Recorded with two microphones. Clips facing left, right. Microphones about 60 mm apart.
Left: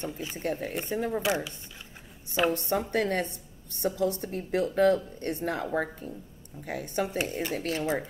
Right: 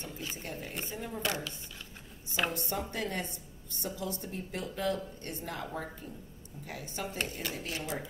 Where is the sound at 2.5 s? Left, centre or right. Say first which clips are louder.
Left 8 dB; left.